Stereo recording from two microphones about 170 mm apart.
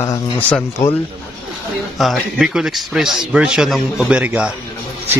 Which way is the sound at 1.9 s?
Centre (ahead or behind).